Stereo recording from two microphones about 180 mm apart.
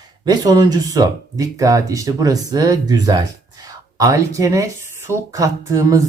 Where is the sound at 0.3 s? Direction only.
20° right (ahead or behind).